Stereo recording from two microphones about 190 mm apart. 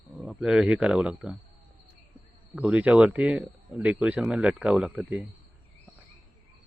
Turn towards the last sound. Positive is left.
turn(degrees=-10)  # may be behind; listen again after turning